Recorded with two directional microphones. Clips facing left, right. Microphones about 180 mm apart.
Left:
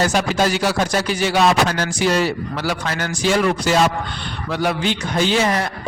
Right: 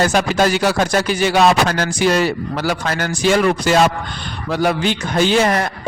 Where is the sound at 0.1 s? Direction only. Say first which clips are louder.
Right 3 dB; 55° right (ahead or behind).